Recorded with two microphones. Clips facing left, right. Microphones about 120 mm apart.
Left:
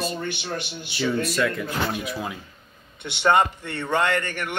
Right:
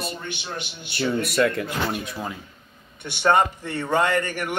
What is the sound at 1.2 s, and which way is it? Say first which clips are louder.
Speech: right 3 dB; 65° right (ahead or behind).